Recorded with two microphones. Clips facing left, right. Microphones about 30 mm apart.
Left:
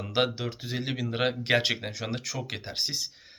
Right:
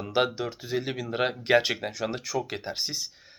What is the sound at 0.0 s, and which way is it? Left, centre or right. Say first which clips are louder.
Speech: right 1 dB; left.